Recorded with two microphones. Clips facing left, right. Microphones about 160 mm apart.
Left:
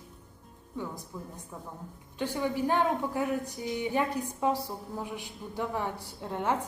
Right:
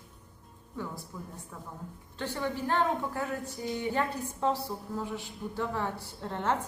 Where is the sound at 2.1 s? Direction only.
10° left (ahead or behind).